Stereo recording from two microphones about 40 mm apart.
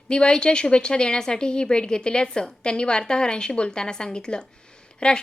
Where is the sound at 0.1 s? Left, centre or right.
Left.